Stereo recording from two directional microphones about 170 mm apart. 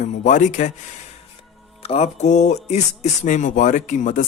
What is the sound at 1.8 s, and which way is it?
Speech, 40° left (ahead or behind).